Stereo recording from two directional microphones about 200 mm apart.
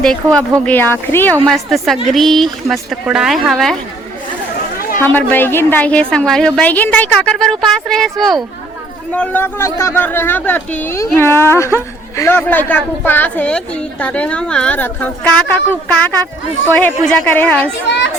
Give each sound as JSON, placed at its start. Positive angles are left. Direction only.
{"t": 0.0, "sound": "a woman's voice", "side_deg": 5}
{"t": 1.5, "sound": "a woman's voice", "side_deg": 0}
{"t": 5.0, "sound": "a woman's voice", "side_deg": 10}